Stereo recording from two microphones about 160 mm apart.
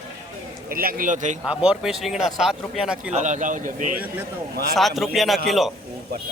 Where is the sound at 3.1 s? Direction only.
50° right (ahead or behind).